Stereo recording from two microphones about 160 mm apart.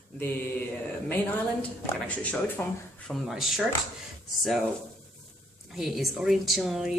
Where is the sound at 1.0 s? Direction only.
10° left (ahead or behind).